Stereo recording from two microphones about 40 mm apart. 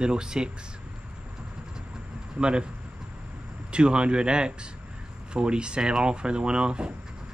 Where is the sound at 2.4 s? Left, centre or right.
Right.